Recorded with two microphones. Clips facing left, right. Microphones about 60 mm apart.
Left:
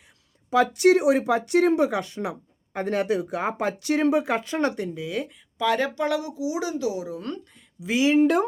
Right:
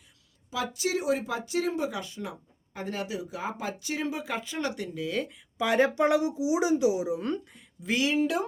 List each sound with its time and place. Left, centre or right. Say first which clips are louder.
0.5 s speech: left 12 dB; left
4.9 s speech: left 1 dB; centre
5.5 s speech: even; centre
7.8 s speech: left 4 dB; centre
8.2 s speech: left 7 dB; left